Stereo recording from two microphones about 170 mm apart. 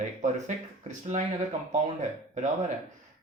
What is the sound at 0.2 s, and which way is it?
Speech, 45° right (ahead or behind).